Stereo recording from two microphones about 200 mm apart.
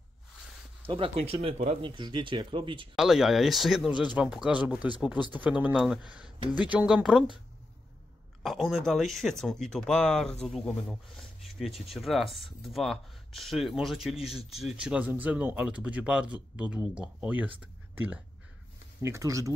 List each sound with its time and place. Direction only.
0.8 s speech: 25° right (ahead or behind)
3.0 s speech: centre (ahead or behind)
8.4 s speech: centre (ahead or behind); by 19.5 s 15° right (ahead or behind)